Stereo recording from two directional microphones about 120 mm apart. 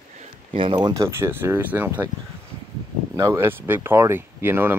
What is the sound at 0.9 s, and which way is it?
Speech, 20° right (ahead or behind).